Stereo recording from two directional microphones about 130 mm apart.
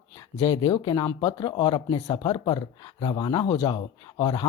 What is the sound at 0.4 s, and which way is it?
Speech, 40° left (ahead or behind).